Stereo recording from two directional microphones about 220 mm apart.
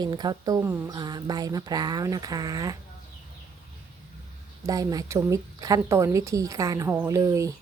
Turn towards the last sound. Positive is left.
turn(degrees=-15)  # may be behind; listen again after turning